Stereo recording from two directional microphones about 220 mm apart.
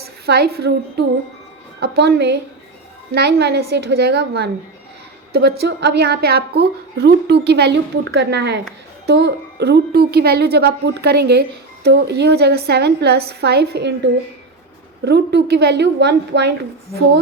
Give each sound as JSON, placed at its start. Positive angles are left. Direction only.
{"t": 0.0, "sound": "a woman's voice", "side_deg": -45}
{"t": 15.0, "sound": "speech", "side_deg": -50}